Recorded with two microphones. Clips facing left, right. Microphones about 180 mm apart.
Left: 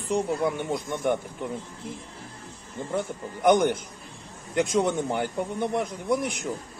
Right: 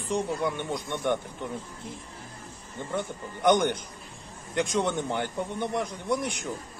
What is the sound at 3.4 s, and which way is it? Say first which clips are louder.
A man's voice: left 2 dB; 5° left (ahead or behind).